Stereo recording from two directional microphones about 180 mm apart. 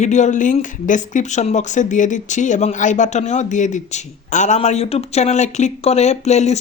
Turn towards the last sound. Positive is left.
turn(degrees=40)  # may be behind; listen again after turning